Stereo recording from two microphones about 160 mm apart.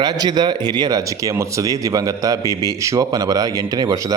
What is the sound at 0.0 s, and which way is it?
Speech, 25° right (ahead or behind).